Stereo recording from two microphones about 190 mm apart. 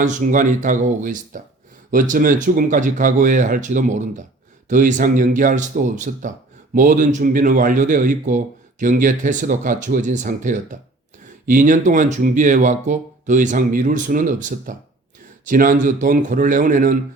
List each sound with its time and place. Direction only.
0.0 s a man's voice: 40° right (ahead or behind)